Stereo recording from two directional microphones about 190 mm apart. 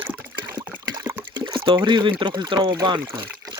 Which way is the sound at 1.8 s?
25° right (ahead or behind).